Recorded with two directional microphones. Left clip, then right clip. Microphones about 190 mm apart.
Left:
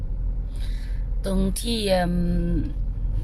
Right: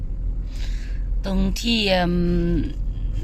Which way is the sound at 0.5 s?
Centre (ahead or behind).